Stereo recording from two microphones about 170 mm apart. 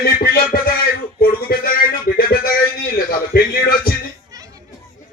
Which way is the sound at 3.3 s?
65° left (ahead or behind).